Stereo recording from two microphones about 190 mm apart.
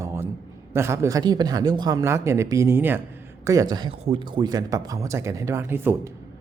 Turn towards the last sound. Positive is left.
turn(degrees=-10)  # may be behind; listen again after turning